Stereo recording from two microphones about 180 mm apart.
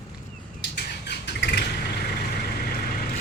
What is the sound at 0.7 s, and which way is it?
Squawk, 70° left (ahead or behind).